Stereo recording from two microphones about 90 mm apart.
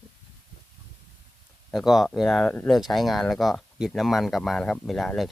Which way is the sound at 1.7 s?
Centre (ahead or behind).